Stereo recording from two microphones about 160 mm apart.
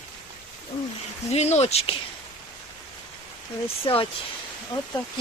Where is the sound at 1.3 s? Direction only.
40° left (ahead or behind).